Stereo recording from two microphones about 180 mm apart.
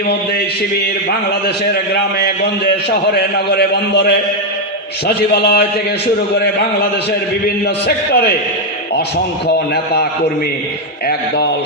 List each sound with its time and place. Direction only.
1.7 s a man's voice: 60° left (ahead or behind)
7.4 s a man's voice: 60° left (ahead or behind)
9.7 s a man's voice: 60° left (ahead or behind)